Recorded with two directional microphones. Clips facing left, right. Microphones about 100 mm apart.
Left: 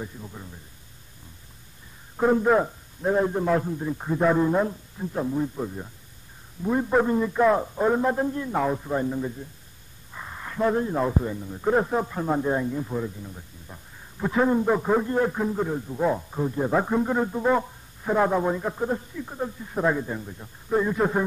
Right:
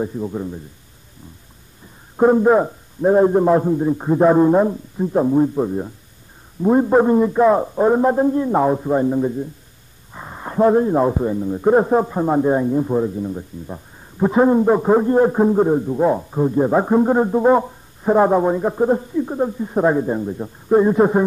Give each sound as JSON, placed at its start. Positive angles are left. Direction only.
{"t": 0.0, "sound": "a man's voice", "side_deg": -35}
{"t": 2.1, "sound": "a man's voice", "side_deg": -30}
{"t": 16.0, "sound": "speech", "side_deg": -25}